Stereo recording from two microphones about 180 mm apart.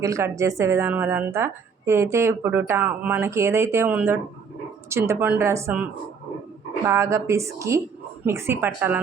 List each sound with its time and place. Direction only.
0.0 s a woman's voice: 15° right (ahead or behind)